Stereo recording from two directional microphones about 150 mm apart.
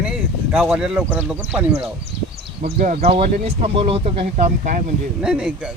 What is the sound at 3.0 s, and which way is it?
Speech, 40° right (ahead or behind).